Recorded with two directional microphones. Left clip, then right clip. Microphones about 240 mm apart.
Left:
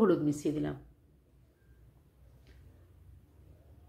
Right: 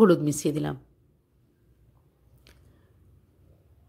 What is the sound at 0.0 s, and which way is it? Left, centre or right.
Speech, right.